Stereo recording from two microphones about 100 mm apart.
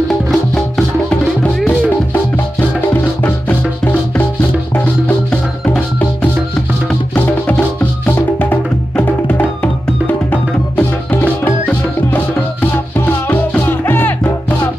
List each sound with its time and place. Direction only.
0.3 s music: centre (ahead or behind)
2.9 s music: 20° left (ahead or behind)